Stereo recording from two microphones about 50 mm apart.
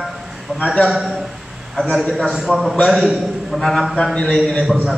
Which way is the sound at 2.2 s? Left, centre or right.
Centre.